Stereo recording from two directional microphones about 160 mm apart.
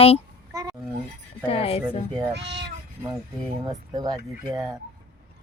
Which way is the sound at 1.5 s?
35° left (ahead or behind).